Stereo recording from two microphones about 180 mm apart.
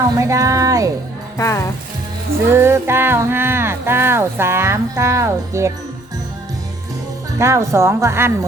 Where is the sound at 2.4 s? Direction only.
15° right (ahead or behind).